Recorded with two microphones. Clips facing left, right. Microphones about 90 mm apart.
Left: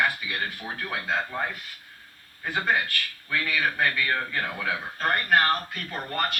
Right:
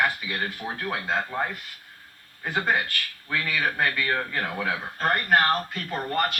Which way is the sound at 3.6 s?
20° right (ahead or behind).